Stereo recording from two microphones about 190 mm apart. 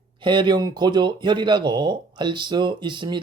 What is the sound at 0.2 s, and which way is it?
Speech, 25° right (ahead or behind).